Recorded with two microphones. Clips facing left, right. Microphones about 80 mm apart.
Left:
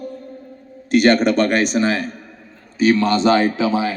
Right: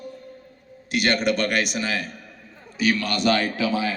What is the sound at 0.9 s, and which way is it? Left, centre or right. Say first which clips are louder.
A man's voice: left 8 dB; left.